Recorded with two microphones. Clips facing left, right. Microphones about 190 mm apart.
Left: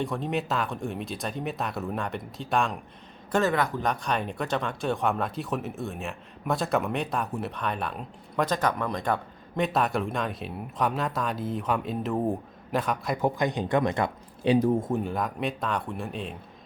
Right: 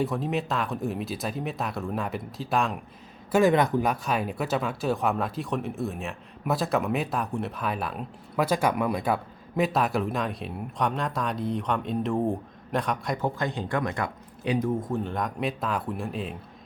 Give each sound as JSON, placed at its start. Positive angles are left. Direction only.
{"t": 0.0, "sound": "speech", "side_deg": 0}
{"t": 3.3, "sound": "speech", "side_deg": -15}
{"t": 3.8, "sound": "speech", "side_deg": -5}
{"t": 13.2, "sound": "speech", "side_deg": 15}
{"t": 15.0, "sound": "speech", "side_deg": 5}